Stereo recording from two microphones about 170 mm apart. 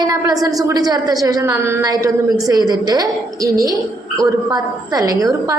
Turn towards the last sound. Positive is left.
turn(degrees=-20)  # may be behind; listen again after turning